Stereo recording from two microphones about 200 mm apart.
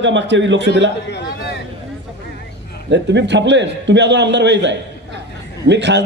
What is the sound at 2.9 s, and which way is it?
A man's voice, 60° right (ahead or behind).